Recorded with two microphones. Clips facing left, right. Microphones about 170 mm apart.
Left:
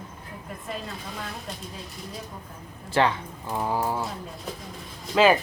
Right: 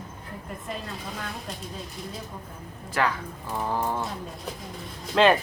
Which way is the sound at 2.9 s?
25° left (ahead or behind).